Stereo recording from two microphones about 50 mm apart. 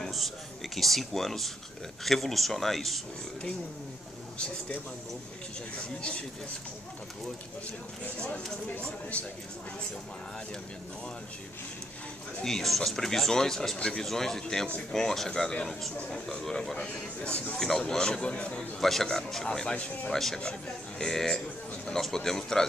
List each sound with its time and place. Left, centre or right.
0.0 s a sound: centre
0.7 s speech: centre
5.8 s a man's voice: left
12.4 s a man's voice: centre
14.0 s speech: centre
16.7 s a man's voice: left
17.6 s speech: centre
18.8 s speech: centre